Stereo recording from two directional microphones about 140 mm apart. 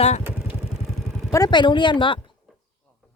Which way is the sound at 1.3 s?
30° left (ahead or behind).